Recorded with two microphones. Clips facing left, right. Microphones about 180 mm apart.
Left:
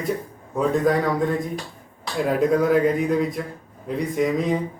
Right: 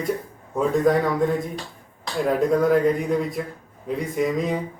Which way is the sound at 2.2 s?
Centre (ahead or behind).